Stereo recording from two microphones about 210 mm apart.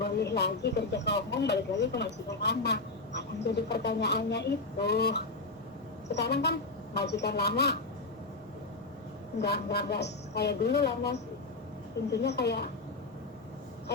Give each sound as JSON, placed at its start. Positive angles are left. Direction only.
{"t": 0.2, "sound": "speech", "side_deg": 50}
{"t": 9.4, "sound": "speech", "side_deg": 50}
{"t": 12.2, "sound": "speech", "side_deg": 55}